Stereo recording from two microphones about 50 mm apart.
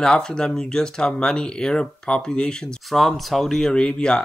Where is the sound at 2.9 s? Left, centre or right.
Centre.